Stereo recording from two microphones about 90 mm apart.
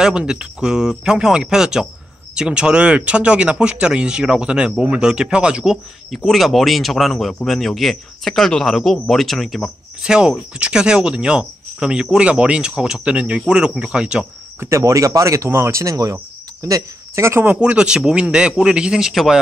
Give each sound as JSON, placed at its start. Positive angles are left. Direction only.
{"t": 0.0, "sound": "speech", "side_deg": -10}
{"t": 14.6, "sound": "speech", "side_deg": -30}
{"t": 17.6, "sound": "speech", "side_deg": -10}